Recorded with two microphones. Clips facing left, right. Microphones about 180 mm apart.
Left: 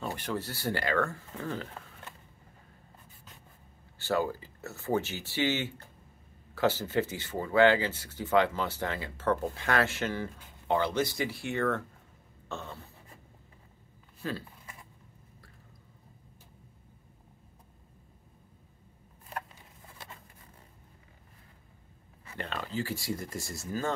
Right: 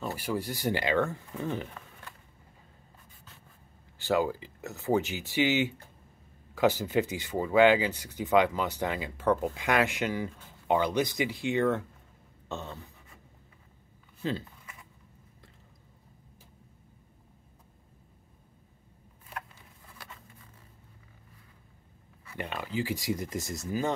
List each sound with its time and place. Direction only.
0.0 s speech: 10° right (ahead or behind)
4.0 s speech: 15° right (ahead or behind)
12.4 s a sound: 20° right (ahead or behind)
14.2 s speech: 20° right (ahead or behind)
20.0 s a sound: 25° left (ahead or behind)
22.4 s speech: 15° right (ahead or behind)